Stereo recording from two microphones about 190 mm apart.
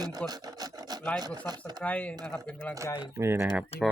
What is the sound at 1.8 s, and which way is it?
Speech, 5° left (ahead or behind).